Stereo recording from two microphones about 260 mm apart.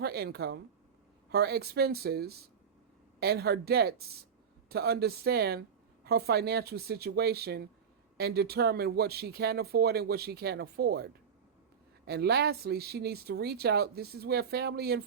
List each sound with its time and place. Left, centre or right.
0.0 s speech: right